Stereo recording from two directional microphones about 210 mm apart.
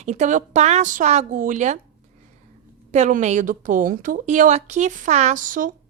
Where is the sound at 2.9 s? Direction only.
35° right (ahead or behind).